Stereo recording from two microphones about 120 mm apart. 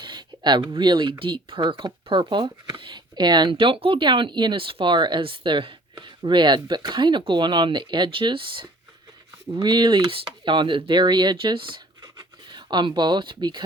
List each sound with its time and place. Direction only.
0.0 s speech: 40° right (ahead or behind)